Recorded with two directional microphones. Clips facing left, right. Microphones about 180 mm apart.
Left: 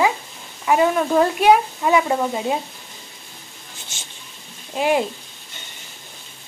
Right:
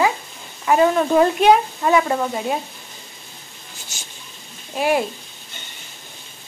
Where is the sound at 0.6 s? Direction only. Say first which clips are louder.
Right 1 dB; 5° left (ahead or behind).